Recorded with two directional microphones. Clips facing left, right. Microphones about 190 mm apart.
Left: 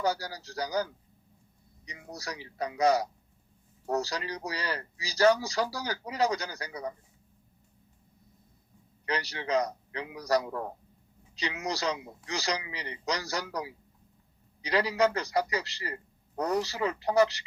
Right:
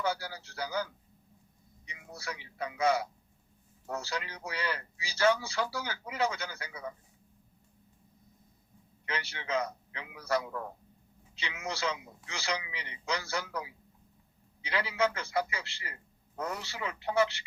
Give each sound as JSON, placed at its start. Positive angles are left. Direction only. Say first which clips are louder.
{"t": 0.0, "sound": "a man's voice", "louder": "left 3 dB", "side_deg": 40}
{"t": 9.0, "sound": "a man's voice", "louder": "left 5 dB", "side_deg": 40}